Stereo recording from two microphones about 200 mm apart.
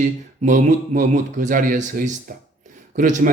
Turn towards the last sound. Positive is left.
turn(degrees=-40)  # may be behind; listen again after turning